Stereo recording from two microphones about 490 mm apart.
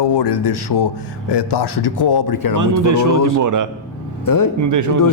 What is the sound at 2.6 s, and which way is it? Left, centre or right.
Speech, right.